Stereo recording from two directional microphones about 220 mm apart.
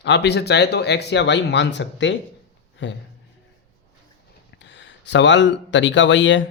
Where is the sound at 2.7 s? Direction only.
55° left (ahead or behind).